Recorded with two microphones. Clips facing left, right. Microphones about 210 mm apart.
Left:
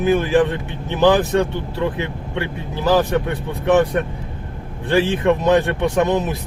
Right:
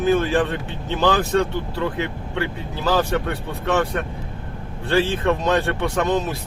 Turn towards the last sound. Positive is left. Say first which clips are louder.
# left 3 dB
turn(degrees=15)  # may be behind; listen again after turning